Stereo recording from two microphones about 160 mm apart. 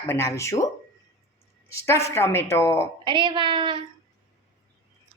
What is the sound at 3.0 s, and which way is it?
Speech, 30° right (ahead or behind).